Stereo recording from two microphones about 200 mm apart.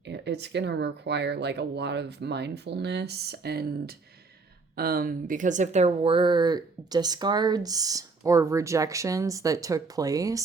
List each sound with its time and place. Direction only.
0.0 s a woman's voice: 60° right (ahead or behind); by 10.4 s 15° right (ahead or behind)